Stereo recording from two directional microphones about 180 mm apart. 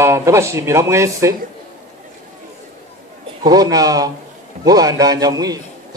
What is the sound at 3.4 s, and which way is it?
A man's voice, 20° right (ahead or behind).